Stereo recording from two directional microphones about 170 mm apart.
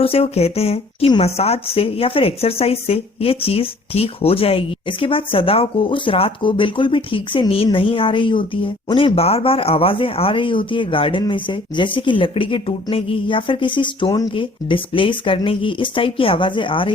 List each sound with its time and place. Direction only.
0.0 s speech: 35° left (ahead or behind)